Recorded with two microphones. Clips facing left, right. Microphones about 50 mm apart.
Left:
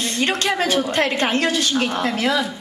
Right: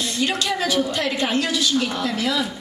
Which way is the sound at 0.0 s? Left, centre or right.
Left.